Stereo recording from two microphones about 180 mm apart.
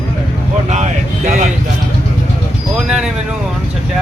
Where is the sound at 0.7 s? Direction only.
40° right (ahead or behind).